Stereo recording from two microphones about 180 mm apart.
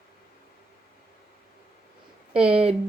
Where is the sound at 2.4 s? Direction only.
30° right (ahead or behind).